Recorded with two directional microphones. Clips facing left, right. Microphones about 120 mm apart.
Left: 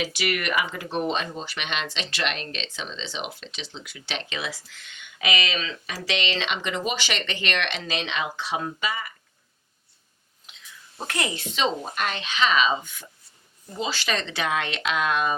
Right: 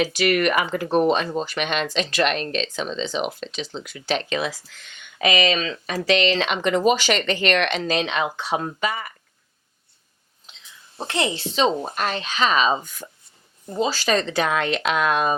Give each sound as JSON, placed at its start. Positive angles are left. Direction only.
{"t": 0.0, "sound": "speech", "side_deg": -45}
{"t": 10.9, "sound": "speech", "side_deg": -25}